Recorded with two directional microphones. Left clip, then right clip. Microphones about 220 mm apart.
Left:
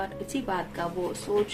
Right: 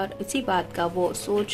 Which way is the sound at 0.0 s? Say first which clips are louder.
Right 4 dB; 50° right (ahead or behind).